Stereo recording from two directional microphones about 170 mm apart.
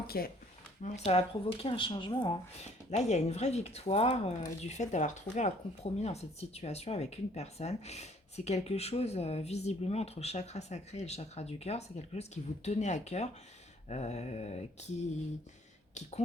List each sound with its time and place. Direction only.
0.1 s speech: 65° left (ahead or behind)
0.8 s speech: 40° left (ahead or behind)
2.9 s speech: 40° left (ahead or behind)